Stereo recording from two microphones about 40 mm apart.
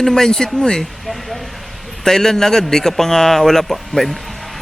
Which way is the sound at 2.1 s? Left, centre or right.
Centre.